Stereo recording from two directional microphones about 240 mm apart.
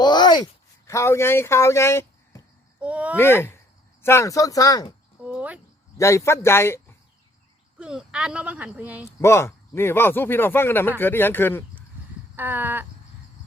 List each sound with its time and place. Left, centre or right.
0.0 s a sound: centre
0.9 s speech: centre
2.8 s speech: centre
3.2 s speech: centre
5.2 s speech: centre
6.0 s speech: centre
7.8 s speech: centre
9.2 s speech: centre
12.4 s a sound: centre